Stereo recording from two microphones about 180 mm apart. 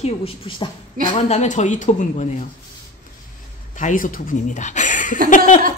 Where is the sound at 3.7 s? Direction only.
45° left (ahead or behind).